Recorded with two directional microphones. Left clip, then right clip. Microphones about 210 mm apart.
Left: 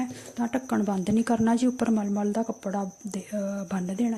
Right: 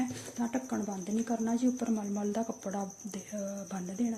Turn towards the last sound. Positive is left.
turn(degrees=30)  # may be behind; listen again after turning